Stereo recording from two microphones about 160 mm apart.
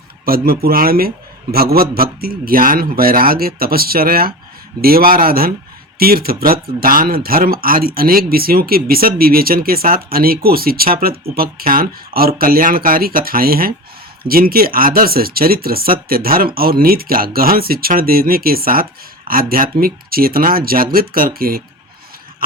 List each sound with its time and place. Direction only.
0.3 s speech: 65° right (ahead or behind)